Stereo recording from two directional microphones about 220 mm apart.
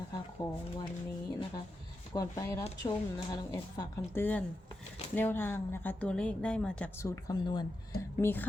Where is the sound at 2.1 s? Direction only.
15° left (ahead or behind).